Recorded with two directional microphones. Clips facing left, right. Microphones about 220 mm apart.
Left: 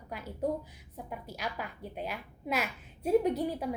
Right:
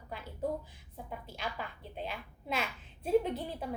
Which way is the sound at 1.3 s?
10° left (ahead or behind).